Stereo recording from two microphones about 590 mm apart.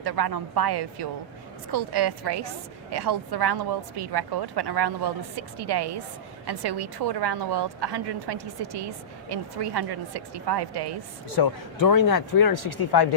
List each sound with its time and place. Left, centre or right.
0.0 s a woman's voice: right
11.3 s speech: left